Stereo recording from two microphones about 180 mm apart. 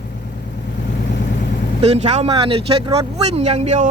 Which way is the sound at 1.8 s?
35° right (ahead or behind).